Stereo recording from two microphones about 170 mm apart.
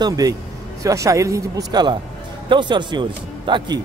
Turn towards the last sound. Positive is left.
turn(degrees=-25)  # may be behind; listen again after turning